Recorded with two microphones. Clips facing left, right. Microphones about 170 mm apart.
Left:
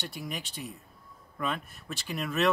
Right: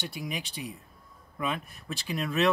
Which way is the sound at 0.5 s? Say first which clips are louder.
Right 2 dB; 45° left (ahead or behind).